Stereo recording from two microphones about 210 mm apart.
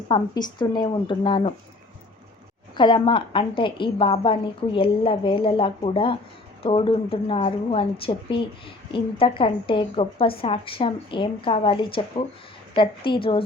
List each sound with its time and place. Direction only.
0.1 s a woman's voice: 20° left (ahead or behind)
2.7 s a woman's voice: 20° left (ahead or behind)